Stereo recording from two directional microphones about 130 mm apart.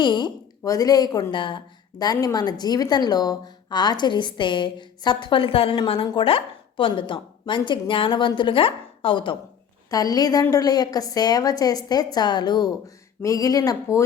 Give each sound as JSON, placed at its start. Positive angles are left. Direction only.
{"t": 0.0, "sound": "a woman's voice", "side_deg": 35}
{"t": 9.9, "sound": "a woman's voice", "side_deg": 30}